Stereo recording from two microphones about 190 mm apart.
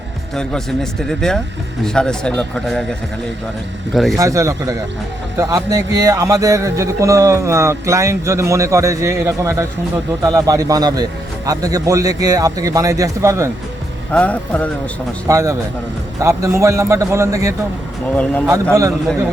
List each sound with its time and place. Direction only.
0.3 s speech: 5° left (ahead or behind)
3.9 s speech: centre (ahead or behind)
4.2 s a man's voice: 15° right (ahead or behind)
14.1 s speech: 5° left (ahead or behind)
15.3 s speech: 15° right (ahead or behind)
18.1 s speech: 10° left (ahead or behind)
18.7 s speech: 15° right (ahead or behind)